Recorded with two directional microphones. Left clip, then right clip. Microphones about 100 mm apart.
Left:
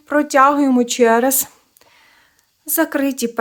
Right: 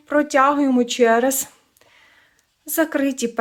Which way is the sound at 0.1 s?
35° left (ahead or behind).